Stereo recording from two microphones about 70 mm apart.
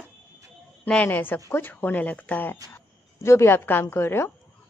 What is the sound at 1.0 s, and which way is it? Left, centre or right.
Speech, left.